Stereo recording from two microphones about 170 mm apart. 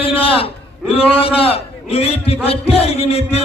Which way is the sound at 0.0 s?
35° left (ahead or behind).